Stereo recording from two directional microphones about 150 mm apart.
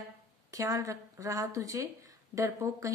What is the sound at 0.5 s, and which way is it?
A woman's voice, 20° right (ahead or behind).